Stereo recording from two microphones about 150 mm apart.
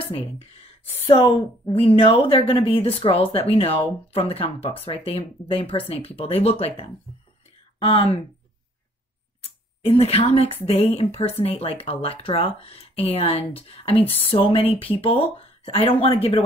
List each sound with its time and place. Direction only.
0.0 s speech: 40° left (ahead or behind)
9.4 s speech: 40° left (ahead or behind)